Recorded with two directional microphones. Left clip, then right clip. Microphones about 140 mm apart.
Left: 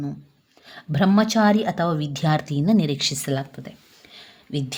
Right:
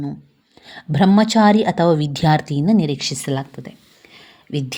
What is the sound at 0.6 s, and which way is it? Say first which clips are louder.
A woman's voice: right 5 dB; 25° right (ahead or behind).